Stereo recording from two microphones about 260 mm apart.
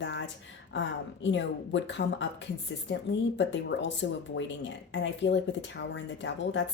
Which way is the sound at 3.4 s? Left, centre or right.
Left.